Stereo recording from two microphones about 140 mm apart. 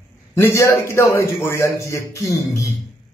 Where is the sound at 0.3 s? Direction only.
20° left (ahead or behind).